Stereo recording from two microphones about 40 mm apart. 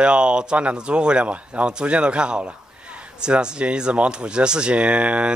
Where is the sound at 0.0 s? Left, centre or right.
Right.